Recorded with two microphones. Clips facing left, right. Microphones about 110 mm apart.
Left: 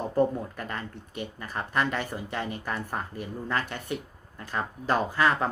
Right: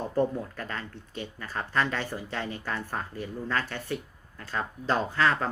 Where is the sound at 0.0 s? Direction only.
15° left (ahead or behind).